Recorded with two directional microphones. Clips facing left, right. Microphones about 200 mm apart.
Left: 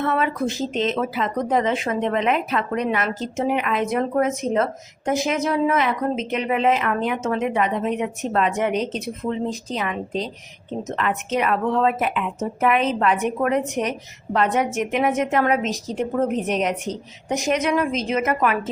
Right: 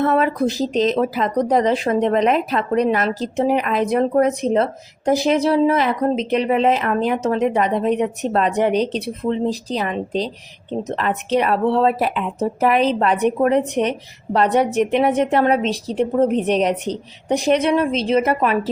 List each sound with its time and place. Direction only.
0.0 s speech: 40° right (ahead or behind)